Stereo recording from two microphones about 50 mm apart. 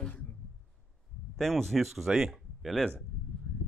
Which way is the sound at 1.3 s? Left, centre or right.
Centre.